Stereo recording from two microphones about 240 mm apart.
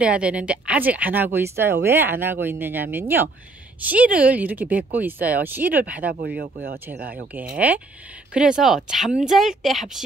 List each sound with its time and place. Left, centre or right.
0.0 s speech: centre
6.0 s speech: right
7.5 s speech: centre